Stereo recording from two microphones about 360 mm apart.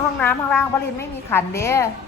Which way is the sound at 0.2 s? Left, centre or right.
Centre.